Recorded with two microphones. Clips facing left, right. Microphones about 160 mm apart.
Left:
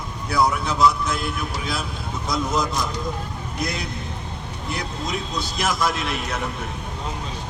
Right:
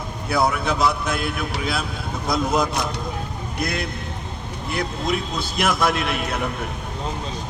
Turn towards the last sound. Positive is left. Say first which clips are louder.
# right 3 dB
turn(degrees=-60)  # may be behind; listen again after turning